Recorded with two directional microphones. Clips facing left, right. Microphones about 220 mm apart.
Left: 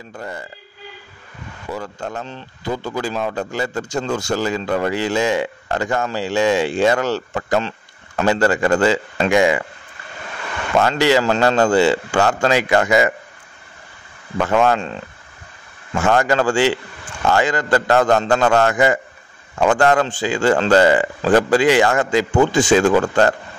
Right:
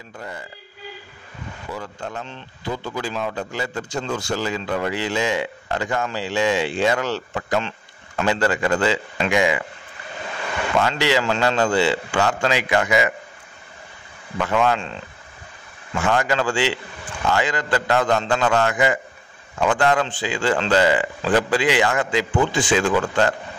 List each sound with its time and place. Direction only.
1.7 s speech: 45° left (ahead or behind)
10.8 s speech: 45° left (ahead or behind)
14.4 s speech: 45° left (ahead or behind)
16.0 s speech: 45° left (ahead or behind)